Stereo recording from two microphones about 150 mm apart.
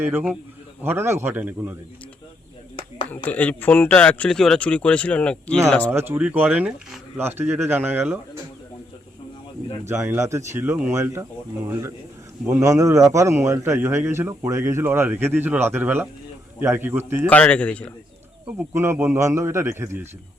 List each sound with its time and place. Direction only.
0.0 s a man's voice: 10° right (ahead or behind)
3.2 s speech: 10° left (ahead or behind)
5.9 s a man's voice: 15° right (ahead or behind)
9.8 s a man's voice: 15° right (ahead or behind)
12.5 s a man's voice: 20° right (ahead or behind)
17.2 s speech: 10° left (ahead or behind)
18.4 s a man's voice: 15° right (ahead or behind)